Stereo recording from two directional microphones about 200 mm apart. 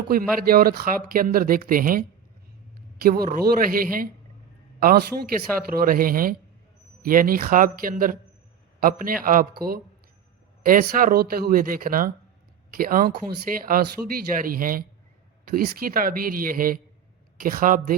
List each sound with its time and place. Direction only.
0.1 s a man's voice: 50° right (ahead or behind)